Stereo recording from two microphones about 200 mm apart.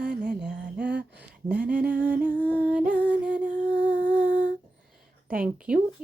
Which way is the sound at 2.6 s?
5° right (ahead or behind).